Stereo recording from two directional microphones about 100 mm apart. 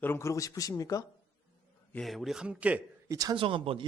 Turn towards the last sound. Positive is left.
turn(degrees=-60)  # may be behind; listen again after turning